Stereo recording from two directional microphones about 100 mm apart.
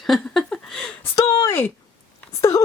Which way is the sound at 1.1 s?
40° left (ahead or behind).